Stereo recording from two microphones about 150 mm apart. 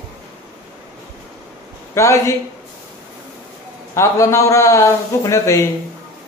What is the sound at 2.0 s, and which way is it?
Speech, 20° left (ahead or behind).